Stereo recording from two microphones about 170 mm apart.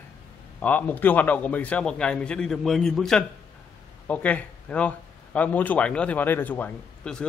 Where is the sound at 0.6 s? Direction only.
10° left (ahead or behind).